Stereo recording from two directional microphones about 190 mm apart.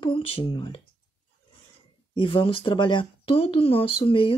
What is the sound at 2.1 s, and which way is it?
Speech, 30° left (ahead or behind).